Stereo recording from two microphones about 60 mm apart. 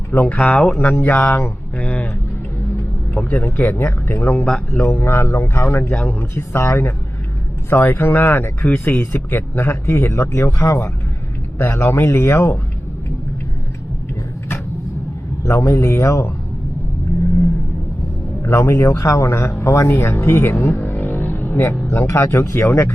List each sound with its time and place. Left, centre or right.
0.1 s speech: left
1.8 s music: left
3.2 s speech: centre
3.6 s speech: left
4.4 s a man's voice: centre
4.9 s speech: left
5.9 s speech: left
6.3 s speech: left
15.4 s speech: left
18.4 s speech: left
20.7 s vehicle: left
21.9 s speech: left